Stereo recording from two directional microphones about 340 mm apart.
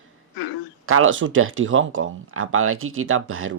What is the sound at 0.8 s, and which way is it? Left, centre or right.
Speech, right.